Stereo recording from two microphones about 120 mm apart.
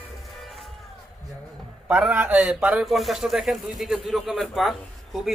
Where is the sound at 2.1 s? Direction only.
15° right (ahead or behind).